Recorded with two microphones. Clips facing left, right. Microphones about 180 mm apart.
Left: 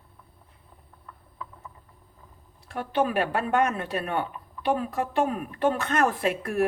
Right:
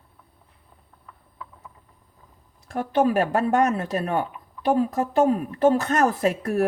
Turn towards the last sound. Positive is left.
turn(degrees=-40)  # may be behind; listen again after turning